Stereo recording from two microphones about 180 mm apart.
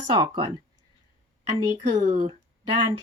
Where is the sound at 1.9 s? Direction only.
45° right (ahead or behind).